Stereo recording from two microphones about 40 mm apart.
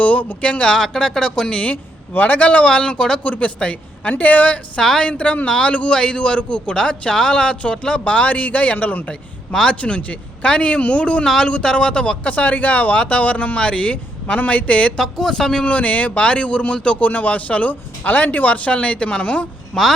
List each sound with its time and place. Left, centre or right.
0.0 s speech: left
0.6 s speech: centre
1.7 s a man's voice: left
2.6 s a man's voice: left
12.2 s speech: left
14.9 s speech: centre
15.6 s speech: left
17.0 s speech: left